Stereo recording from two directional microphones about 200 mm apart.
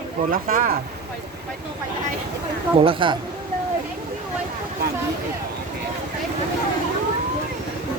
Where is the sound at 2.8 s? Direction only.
25° right (ahead or behind).